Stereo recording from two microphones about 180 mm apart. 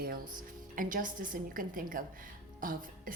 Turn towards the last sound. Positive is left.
turn(degrees=-50)  # may be behind; listen again after turning